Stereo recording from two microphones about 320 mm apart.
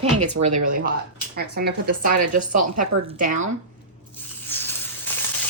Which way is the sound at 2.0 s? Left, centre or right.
Right.